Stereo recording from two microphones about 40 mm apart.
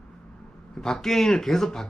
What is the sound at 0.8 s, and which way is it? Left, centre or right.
Speech, centre.